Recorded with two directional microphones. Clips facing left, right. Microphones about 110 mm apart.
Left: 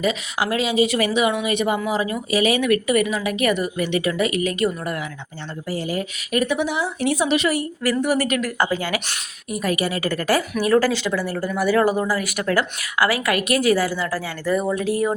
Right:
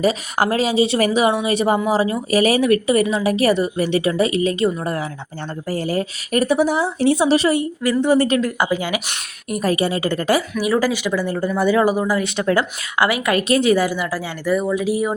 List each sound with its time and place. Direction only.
0.0 s speech: 40° right (ahead or behind)
5.6 s speech: 45° right (ahead or behind)
7.6 s speech: 20° right (ahead or behind)
8.5 s speech: 15° right (ahead or behind)
9.6 s speech: 30° right (ahead or behind)
10.6 s speech: 15° right (ahead or behind)